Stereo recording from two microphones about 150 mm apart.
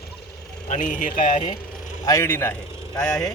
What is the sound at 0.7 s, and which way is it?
Speech, 55° left (ahead or behind).